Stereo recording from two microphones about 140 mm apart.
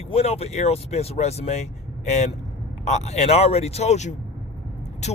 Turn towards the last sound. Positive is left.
turn(degrees=55)  # may be behind; listen again after turning